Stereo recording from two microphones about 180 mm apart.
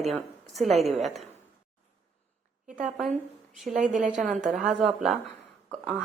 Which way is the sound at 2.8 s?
Centre (ahead or behind).